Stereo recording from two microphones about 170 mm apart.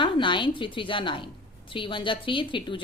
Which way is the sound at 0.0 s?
30° left (ahead or behind).